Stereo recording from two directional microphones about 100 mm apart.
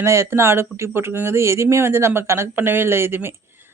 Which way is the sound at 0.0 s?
30° right (ahead or behind).